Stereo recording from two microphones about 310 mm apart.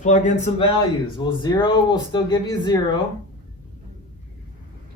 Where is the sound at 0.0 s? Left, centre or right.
Left.